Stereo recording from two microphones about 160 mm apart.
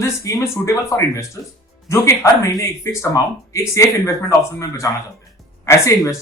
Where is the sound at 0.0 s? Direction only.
20° left (ahead or behind).